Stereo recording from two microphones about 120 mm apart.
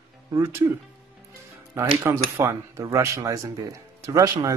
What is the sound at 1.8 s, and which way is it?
Speech, 20° right (ahead or behind).